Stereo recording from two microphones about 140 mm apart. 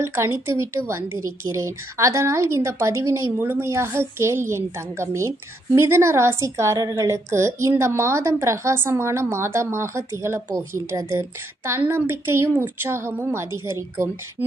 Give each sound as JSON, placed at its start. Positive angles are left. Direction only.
{"t": 0.0, "sound": "a woman's voice", "side_deg": -20}